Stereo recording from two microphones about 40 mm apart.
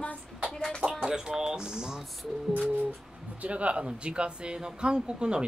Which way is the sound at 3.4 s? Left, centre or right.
Right.